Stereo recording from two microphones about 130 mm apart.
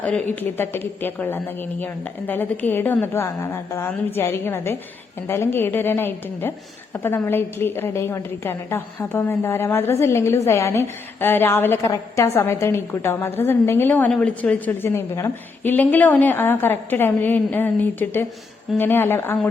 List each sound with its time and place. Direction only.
0.3 s a woman's voice: 15° left (ahead or behind)